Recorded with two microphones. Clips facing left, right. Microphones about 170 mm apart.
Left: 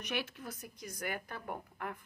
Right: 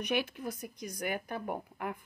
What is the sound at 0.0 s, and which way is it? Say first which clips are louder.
A woman's voice: right 6 dB; 15° right (ahead or behind).